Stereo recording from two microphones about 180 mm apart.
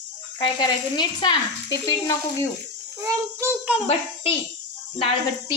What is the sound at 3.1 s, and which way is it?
Speech, 15° right (ahead or behind).